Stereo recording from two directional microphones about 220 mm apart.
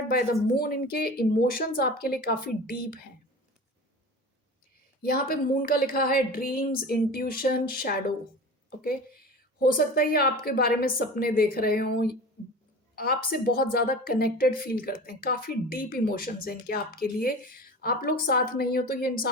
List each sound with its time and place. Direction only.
0.1 s a woman's voice: 45° left (ahead or behind)
5.0 s a woman's voice: 40° left (ahead or behind)